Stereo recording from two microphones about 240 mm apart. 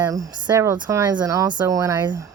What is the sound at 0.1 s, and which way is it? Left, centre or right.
Speech, centre.